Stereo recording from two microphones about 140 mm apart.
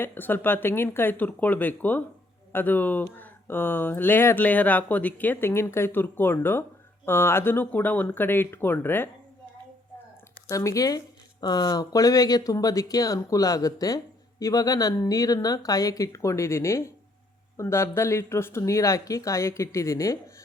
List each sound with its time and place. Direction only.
0.0 s speech: 15° left (ahead or behind)
10.5 s speech: 20° left (ahead or behind)